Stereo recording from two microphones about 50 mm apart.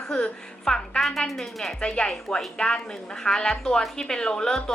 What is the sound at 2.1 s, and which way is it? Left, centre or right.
A woman's voice, centre.